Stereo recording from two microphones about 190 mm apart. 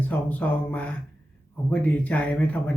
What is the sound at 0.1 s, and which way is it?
Speech, 10° left (ahead or behind).